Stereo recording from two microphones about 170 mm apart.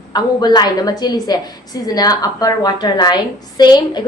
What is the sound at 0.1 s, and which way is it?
A woman's voice, 25° left (ahead or behind).